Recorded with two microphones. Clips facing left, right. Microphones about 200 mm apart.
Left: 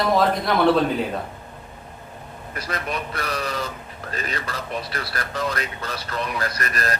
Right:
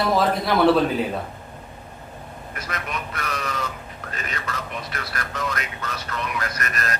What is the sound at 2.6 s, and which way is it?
Speech, 35° left (ahead or behind).